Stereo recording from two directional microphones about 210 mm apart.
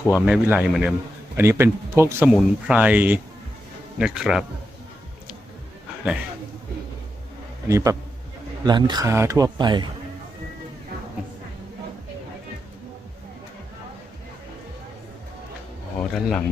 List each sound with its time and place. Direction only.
0.3 s a man's voice: 5° right (ahead or behind)
7.7 s speech: 15° right (ahead or behind)
16.0 s a sound: centre (ahead or behind)